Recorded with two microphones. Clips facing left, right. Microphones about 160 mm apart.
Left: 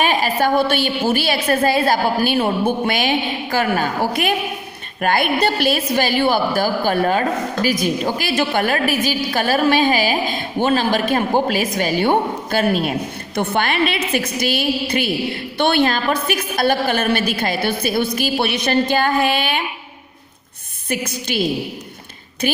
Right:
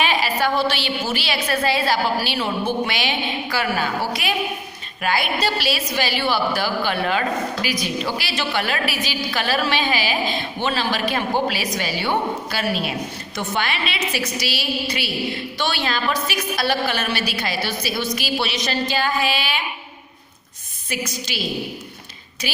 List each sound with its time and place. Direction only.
0.0 s a woman's voice: 50° left (ahead or behind)
20.9 s a woman's voice: 55° left (ahead or behind)
22.4 s a woman's voice: 50° left (ahead or behind)